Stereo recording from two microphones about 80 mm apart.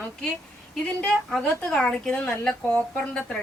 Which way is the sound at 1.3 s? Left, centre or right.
Centre.